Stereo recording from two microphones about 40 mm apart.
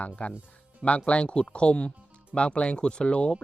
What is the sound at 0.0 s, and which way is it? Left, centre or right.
Speech, left.